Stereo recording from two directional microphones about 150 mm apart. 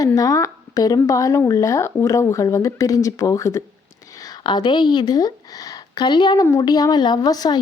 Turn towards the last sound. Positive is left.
turn(degrees=25)  # may be behind; listen again after turning